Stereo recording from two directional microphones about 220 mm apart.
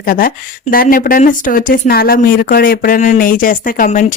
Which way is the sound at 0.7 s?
40° left (ahead or behind).